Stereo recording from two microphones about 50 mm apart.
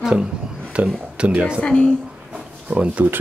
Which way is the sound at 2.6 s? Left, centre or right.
Right.